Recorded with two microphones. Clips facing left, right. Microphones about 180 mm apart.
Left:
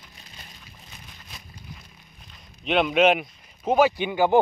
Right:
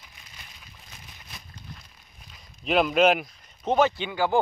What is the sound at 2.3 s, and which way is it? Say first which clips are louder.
A man's voice: even; centre (ahead or behind).